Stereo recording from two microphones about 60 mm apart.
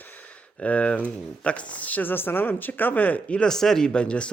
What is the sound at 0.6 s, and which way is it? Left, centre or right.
Speech, left.